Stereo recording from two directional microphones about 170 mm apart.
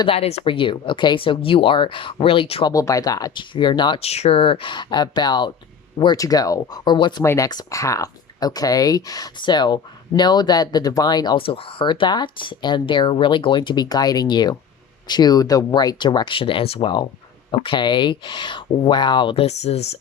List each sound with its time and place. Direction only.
0.0 s speech: 35° left (ahead or behind)
2.7 s speech: 20° left (ahead or behind); by 19.8 s 40° left (ahead or behind)